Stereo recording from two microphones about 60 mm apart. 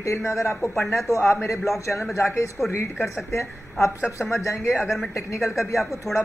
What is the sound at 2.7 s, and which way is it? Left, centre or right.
A woman's voice, left.